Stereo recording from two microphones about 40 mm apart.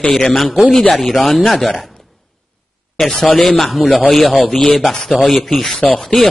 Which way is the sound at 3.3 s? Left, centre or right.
Left.